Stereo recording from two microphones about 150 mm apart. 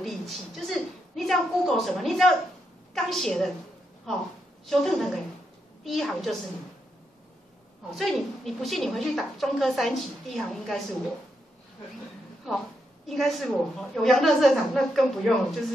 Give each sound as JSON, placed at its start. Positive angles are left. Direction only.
{"t": 0.0, "sound": "a woman's voice", "side_deg": 0}
{"t": 4.6, "sound": "a woman's voice", "side_deg": 0}
{"t": 7.9, "sound": "a woman's voice", "side_deg": 0}
{"t": 12.4, "sound": "a woman's voice", "side_deg": 0}